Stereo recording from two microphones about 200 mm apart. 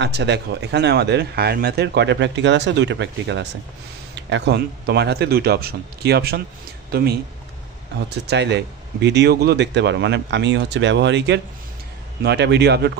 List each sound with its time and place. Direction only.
0.0 s speech: 60° right (ahead or behind)